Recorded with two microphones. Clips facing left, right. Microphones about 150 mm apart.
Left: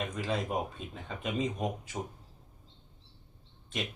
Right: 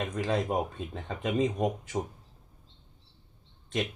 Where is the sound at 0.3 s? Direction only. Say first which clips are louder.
Right 4 dB; 20° right (ahead or behind).